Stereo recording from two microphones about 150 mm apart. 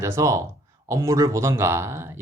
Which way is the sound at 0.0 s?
20° right (ahead or behind).